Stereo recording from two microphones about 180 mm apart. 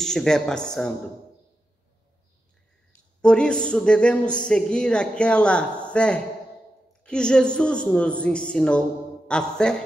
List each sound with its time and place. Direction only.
0.0 s a man's voice: 5° left (ahead or behind)
3.2 s a man's voice: 5° left (ahead or behind)